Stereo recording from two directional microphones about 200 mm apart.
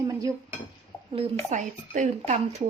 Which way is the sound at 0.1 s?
15° right (ahead or behind).